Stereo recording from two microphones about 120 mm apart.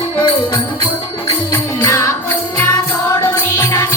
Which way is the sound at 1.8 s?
25° left (ahead or behind).